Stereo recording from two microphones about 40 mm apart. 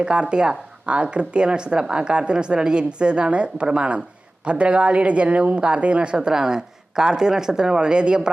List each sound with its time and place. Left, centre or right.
0.0 s speech: right